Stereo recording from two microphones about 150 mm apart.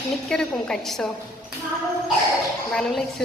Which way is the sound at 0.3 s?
5° left (ahead or behind).